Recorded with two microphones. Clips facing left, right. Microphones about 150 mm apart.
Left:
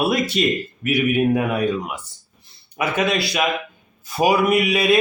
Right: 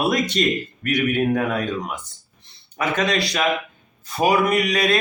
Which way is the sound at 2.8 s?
10° left (ahead or behind).